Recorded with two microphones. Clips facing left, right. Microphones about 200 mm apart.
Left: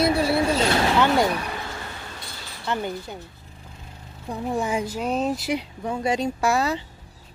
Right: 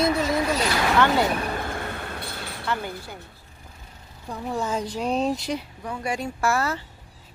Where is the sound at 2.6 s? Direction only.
20° left (ahead or behind).